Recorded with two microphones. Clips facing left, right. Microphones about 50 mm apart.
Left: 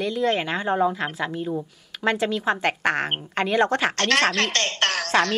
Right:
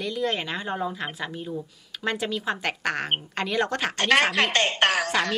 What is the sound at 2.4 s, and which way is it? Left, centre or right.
A woman's voice, left.